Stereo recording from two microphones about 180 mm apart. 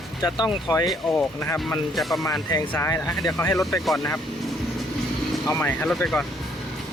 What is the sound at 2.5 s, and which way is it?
Speech, 15° left (ahead or behind).